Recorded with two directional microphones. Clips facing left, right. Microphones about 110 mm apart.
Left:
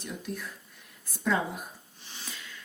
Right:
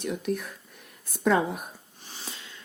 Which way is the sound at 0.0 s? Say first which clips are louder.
Right 8 dB; 65° right (ahead or behind).